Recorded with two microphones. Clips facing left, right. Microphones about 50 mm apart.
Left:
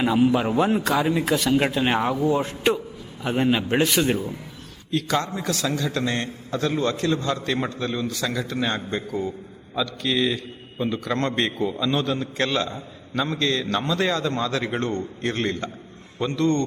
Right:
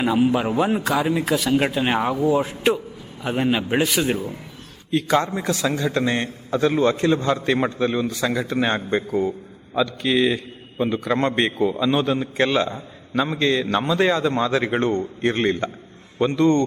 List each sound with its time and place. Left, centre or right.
0.0 s a man's voice: centre
4.9 s a man's voice: right